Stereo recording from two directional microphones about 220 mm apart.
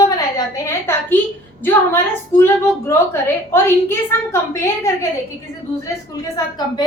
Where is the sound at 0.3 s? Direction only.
10° left (ahead or behind).